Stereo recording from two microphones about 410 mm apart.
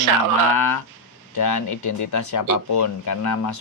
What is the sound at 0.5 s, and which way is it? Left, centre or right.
Speech, left.